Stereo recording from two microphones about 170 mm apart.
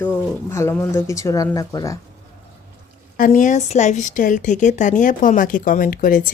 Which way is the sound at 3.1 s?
50° left (ahead or behind).